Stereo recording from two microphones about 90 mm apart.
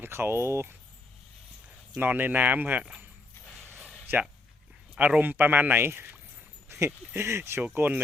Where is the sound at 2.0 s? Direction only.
20° right (ahead or behind).